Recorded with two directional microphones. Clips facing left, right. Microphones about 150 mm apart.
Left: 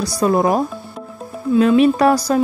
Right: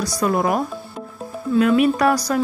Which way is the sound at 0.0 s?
30° left (ahead or behind).